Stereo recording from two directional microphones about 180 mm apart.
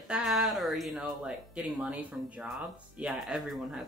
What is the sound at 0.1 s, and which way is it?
A woman's voice, centre (ahead or behind).